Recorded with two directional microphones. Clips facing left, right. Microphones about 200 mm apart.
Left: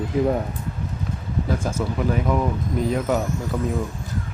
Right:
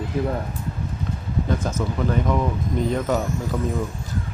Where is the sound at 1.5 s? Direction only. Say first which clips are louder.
Even; 10° left (ahead or behind).